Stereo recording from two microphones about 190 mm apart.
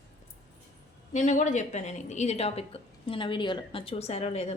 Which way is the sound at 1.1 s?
40° left (ahead or behind).